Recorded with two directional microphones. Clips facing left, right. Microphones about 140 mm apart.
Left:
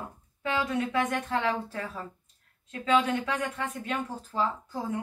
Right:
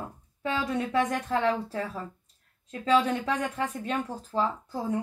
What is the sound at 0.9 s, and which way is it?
Speech, 35° right (ahead or behind).